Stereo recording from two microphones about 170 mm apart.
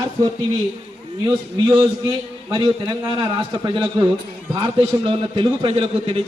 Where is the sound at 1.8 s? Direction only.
25° right (ahead or behind).